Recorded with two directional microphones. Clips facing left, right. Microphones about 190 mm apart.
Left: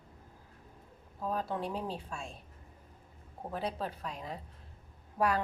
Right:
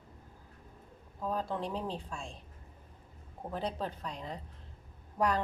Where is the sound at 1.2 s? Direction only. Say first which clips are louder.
Even; 5° left (ahead or behind).